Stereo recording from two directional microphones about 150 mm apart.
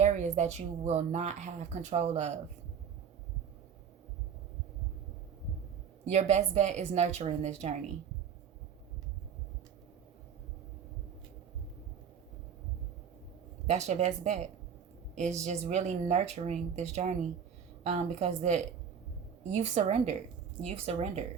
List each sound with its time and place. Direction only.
0.0 s speech: 50° right (ahead or behind)
6.1 s speech: 45° right (ahead or behind)
13.7 s speech: 50° right (ahead or behind)